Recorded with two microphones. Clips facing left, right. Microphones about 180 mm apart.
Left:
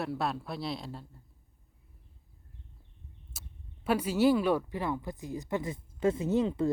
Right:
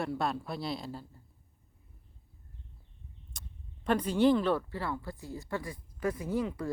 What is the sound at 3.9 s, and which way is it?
Speech, 5° left (ahead or behind).